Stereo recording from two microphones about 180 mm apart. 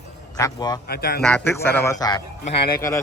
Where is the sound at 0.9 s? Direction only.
60° left (ahead or behind).